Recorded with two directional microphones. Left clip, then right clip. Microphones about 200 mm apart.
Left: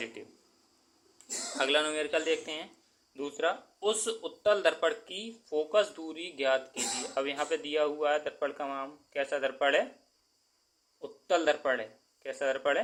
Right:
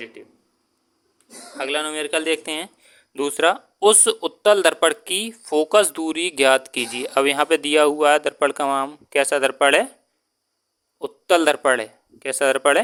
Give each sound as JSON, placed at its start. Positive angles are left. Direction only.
{"t": 0.0, "sound": "speech", "side_deg": -20}
{"t": 1.5, "sound": "a man's voice", "side_deg": -20}
{"t": 1.9, "sound": "speech", "side_deg": -40}
{"t": 11.0, "sound": "a man's voice", "side_deg": -60}